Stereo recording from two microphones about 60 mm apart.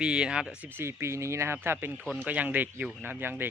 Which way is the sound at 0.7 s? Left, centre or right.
Right.